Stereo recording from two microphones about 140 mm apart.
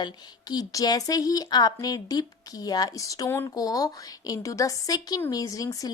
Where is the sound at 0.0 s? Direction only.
30° left (ahead or behind).